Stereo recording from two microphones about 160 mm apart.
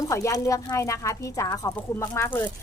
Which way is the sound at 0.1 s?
20° left (ahead or behind).